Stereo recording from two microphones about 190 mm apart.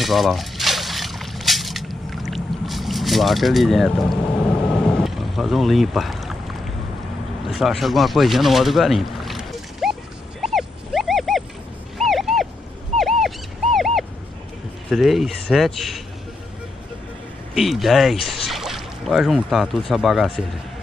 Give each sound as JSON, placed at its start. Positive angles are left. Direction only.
{"t": 0.0, "sound": "a sound", "side_deg": 0}
{"t": 7.4, "sound": "speech", "side_deg": 0}
{"t": 10.4, "sound": "dog", "side_deg": 0}
{"t": 12.9, "sound": "a sound", "side_deg": 0}
{"t": 14.9, "sound": "speech", "side_deg": 0}
{"t": 17.6, "sound": "speech", "side_deg": 0}